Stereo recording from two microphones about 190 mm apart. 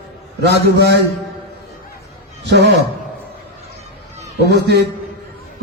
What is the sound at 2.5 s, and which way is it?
Speech, 65° right (ahead or behind).